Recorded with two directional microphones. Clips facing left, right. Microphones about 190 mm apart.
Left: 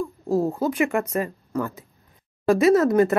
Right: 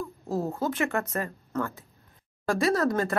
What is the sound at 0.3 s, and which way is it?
Speech, 15° left (ahead or behind).